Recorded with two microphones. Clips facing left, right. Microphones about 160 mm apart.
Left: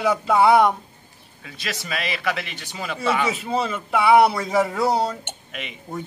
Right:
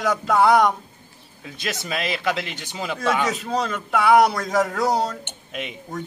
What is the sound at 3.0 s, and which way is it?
A man's voice, 5° left (ahead or behind).